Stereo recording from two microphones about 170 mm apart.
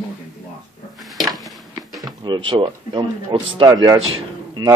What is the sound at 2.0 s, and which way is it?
Speech, 25° right (ahead or behind).